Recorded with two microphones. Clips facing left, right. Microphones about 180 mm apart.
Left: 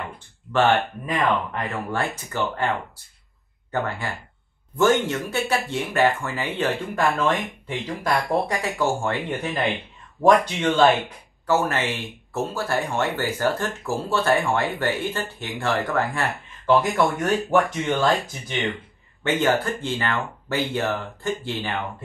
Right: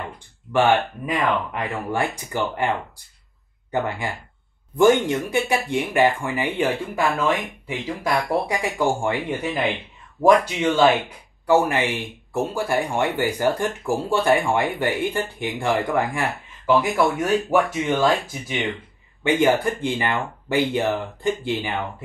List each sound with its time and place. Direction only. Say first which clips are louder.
0.5 s speech: right 1 dB; 10° right (ahead or behind)
3.7 s speech: right 2 dB; 15° right (ahead or behind)